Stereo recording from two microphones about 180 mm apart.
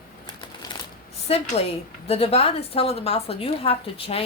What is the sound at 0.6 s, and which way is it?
Shuffling cards, 20° left (ahead or behind).